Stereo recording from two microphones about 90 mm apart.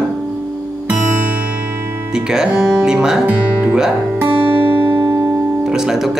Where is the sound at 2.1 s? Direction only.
10° right (ahead or behind).